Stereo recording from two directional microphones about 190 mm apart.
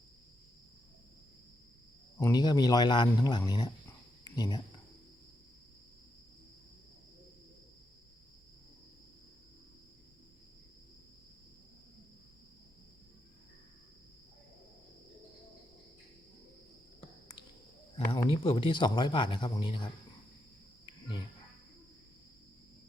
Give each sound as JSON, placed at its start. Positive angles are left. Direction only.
{"t": 2.1, "sound": "speech", "side_deg": 20}
{"t": 4.2, "sound": "cricket", "side_deg": 20}
{"t": 17.0, "sound": "a sound", "side_deg": 25}
{"t": 17.9, "sound": "speech", "side_deg": 25}